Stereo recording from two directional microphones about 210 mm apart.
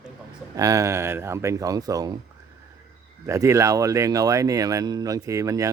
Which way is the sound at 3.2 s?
15° right (ahead or behind).